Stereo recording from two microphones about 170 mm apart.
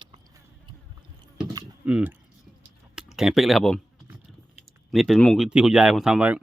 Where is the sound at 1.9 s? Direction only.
5° right (ahead or behind).